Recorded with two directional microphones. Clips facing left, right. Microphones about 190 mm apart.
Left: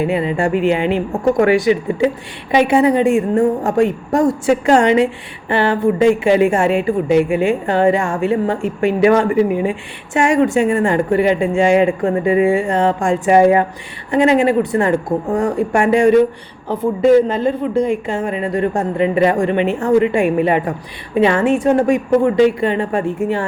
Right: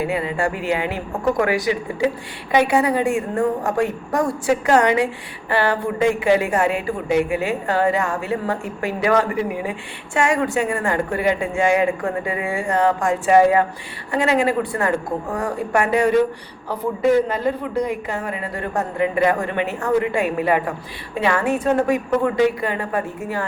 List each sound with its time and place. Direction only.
0.0 s a woman's voice: 25° left (ahead or behind)